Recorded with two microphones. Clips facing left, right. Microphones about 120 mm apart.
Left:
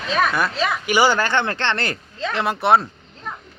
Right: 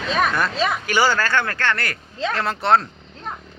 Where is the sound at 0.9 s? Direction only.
15° left (ahead or behind).